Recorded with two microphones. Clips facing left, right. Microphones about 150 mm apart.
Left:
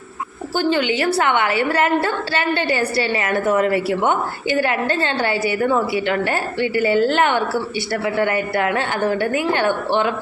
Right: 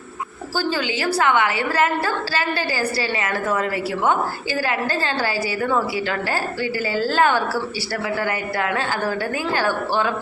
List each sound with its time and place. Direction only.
0.5 s a woman's voice: 25° left (ahead or behind)